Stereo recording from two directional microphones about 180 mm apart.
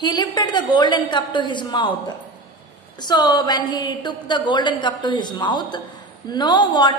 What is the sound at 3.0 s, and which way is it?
A woman's voice, 25° left (ahead or behind).